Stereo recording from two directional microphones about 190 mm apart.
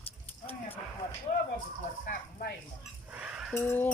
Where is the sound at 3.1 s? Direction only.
5° right (ahead or behind).